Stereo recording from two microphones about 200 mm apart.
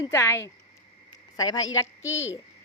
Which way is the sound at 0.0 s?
15° left (ahead or behind).